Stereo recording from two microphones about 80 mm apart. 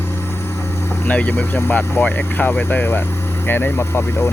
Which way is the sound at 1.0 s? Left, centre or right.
Left.